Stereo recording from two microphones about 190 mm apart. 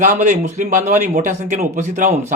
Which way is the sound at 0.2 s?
40° right (ahead or behind).